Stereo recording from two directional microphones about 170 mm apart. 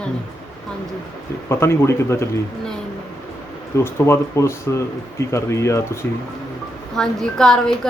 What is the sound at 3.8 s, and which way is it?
Speech, 15° left (ahead or behind).